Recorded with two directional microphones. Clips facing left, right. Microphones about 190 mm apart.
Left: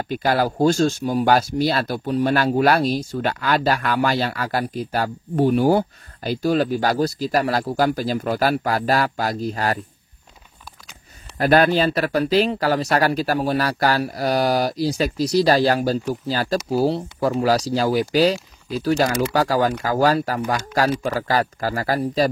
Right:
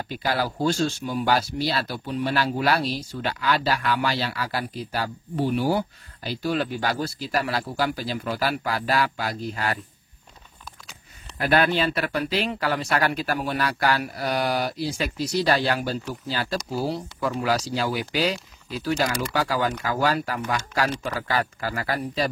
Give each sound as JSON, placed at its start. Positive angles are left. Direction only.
{"t": 0.0, "sound": "speech", "side_deg": 50}
{"t": 11.3, "sound": "speech", "side_deg": 40}